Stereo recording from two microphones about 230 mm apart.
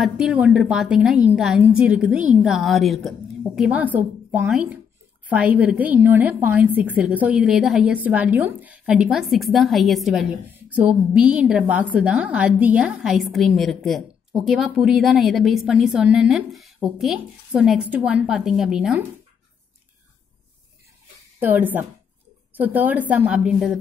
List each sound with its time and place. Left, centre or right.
0.0 s a woman's voice: centre
21.4 s a woman's voice: centre